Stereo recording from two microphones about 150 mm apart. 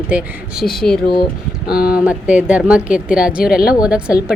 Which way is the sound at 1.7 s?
80° left.